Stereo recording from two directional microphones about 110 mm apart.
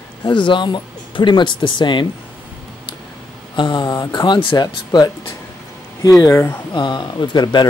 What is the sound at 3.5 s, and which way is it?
Speech, 45° left (ahead or behind).